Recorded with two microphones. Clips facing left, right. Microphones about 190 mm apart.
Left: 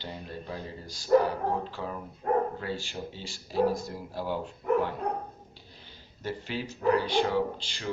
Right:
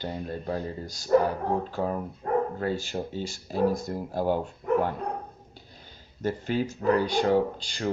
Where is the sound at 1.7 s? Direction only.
45° right (ahead or behind).